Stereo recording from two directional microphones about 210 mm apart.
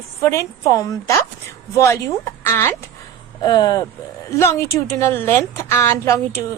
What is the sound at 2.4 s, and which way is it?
A woman's voice, 10° left (ahead or behind).